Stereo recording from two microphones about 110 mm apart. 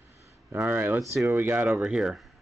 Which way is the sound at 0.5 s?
20° right (ahead or behind).